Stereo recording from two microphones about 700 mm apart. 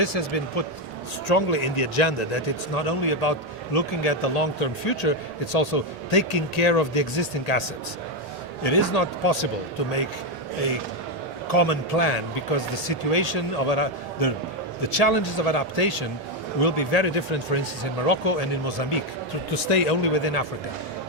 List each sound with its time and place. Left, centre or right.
0.0 s a man's voice: left
8.6 s a man's voice: left
11.4 s a man's voice: left
19.6 s a man's voice: left